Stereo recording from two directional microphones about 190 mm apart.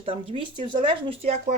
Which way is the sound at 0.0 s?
30° right (ahead or behind).